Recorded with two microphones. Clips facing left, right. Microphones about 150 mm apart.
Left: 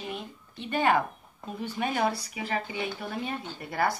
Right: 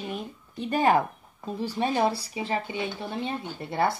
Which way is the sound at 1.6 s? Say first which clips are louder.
Right 3 dB; 30° right (ahead or behind).